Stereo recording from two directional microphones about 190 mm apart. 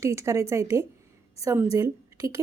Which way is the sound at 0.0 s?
15° right (ahead or behind).